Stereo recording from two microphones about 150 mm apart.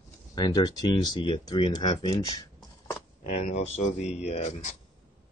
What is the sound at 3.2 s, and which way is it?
Speech, 50° left (ahead or behind).